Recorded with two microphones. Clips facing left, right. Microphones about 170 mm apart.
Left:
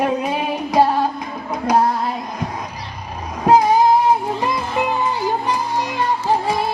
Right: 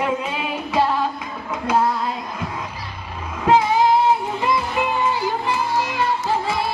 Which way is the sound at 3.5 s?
40° left (ahead or behind).